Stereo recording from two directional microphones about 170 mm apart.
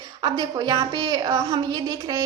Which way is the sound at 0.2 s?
25° right (ahead or behind).